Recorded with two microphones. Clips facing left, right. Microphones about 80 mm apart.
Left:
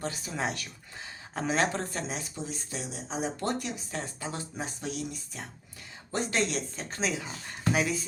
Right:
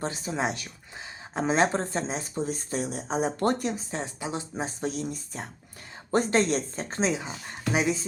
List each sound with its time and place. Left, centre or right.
0.0 s speech: right
2.4 s speech: right
4.0 s speech: centre